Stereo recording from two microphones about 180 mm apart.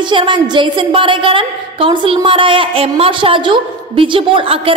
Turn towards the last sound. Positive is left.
turn(degrees=-30)  # may be behind; listen again after turning